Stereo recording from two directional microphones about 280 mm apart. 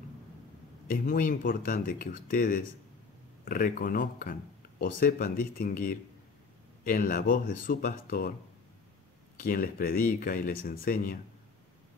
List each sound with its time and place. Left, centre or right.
0.8 s speech: left
9.4 s speech: left